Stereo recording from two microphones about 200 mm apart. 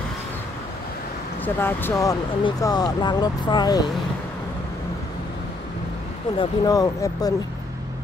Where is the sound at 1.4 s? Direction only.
10° left (ahead or behind).